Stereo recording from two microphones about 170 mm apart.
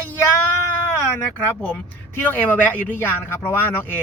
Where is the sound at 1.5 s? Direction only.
10° left (ahead or behind).